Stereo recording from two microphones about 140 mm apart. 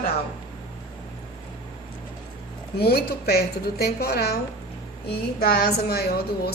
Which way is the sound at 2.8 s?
90° left.